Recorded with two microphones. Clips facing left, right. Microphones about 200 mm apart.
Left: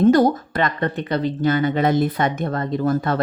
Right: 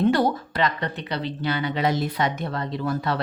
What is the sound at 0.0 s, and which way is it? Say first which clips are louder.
Speech: left 6 dB; 45° left (ahead or behind).